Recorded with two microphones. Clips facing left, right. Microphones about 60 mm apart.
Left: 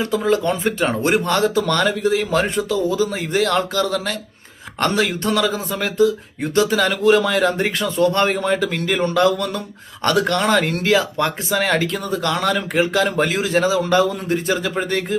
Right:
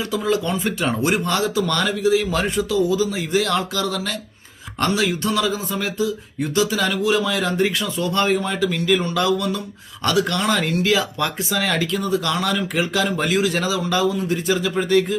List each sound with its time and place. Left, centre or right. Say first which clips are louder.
0.0 s speech: left 3 dB; left